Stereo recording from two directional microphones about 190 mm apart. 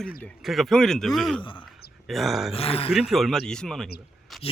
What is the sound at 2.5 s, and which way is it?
Speech, 30° left (ahead or behind).